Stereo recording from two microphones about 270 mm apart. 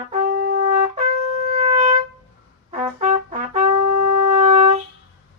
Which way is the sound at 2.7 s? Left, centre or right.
Right.